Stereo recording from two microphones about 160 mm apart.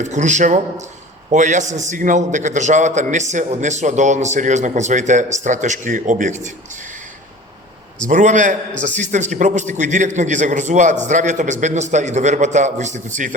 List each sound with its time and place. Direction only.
0.0 s a man's voice: 50° right (ahead or behind)
8.0 s a man's voice: 55° right (ahead or behind)